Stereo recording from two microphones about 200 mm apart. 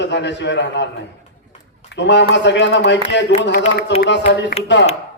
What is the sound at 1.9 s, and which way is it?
A man's voice, 60° left (ahead or behind).